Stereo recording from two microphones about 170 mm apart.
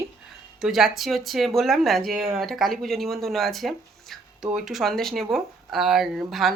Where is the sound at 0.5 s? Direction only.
5° right (ahead or behind).